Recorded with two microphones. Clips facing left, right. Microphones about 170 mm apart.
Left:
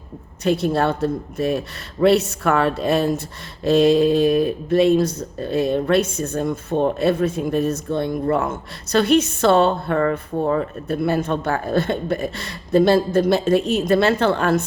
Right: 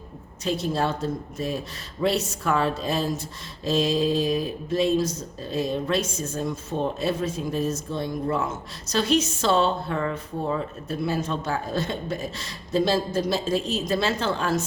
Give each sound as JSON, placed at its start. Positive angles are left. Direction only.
{"t": 0.4, "sound": "speech", "side_deg": 60}